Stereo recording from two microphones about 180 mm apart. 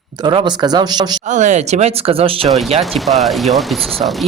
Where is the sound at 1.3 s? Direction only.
40° right (ahead or behind).